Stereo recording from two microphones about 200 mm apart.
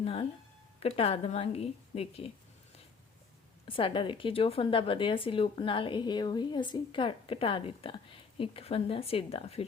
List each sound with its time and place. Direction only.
0.0 s music: 30° left (ahead or behind)
0.8 s a woman's voice: 30° left (ahead or behind)
3.7 s a woman's voice: 25° left (ahead or behind)